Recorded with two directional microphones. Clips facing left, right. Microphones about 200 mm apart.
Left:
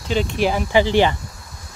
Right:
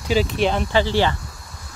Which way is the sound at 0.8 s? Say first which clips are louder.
Left 3 dB; 15° left (ahead or behind).